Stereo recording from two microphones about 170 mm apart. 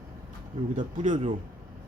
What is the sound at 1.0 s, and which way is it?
Speech, 50° right (ahead or behind).